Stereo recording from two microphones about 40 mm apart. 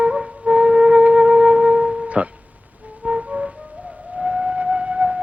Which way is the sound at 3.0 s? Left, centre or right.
Right.